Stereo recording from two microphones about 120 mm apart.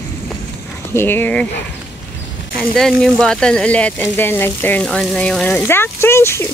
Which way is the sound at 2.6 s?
5° left (ahead or behind).